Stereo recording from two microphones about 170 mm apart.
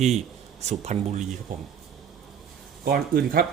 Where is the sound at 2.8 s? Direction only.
65° right (ahead or behind).